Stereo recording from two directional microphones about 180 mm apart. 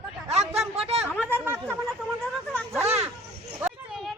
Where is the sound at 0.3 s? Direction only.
35° right (ahead or behind).